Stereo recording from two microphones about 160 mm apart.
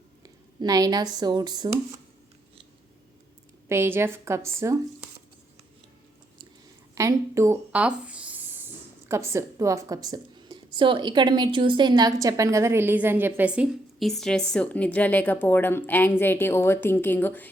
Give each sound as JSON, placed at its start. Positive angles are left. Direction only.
{"t": 0.2, "sound": "speech", "side_deg": -25}
{"t": 3.7, "sound": "speech", "side_deg": -15}
{"t": 6.9, "sound": "speech", "side_deg": -20}